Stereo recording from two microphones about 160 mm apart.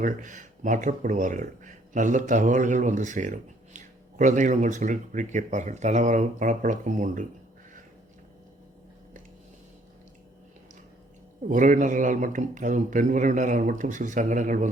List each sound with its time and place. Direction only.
0.0 s speech: 55° right (ahead or behind)
11.4 s speech: 55° right (ahead or behind)